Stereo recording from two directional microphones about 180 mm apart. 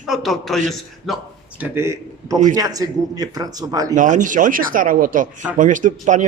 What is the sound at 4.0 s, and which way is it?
A man's voice, 45° right (ahead or behind).